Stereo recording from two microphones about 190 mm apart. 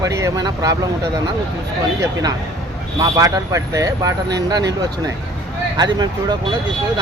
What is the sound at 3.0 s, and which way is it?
Speech, 15° right (ahead or behind).